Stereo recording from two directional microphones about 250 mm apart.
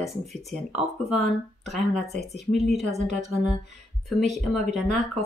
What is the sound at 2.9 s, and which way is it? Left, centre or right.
Speech, right.